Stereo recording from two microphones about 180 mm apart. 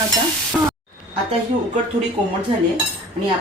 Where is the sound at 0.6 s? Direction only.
10° right (ahead or behind).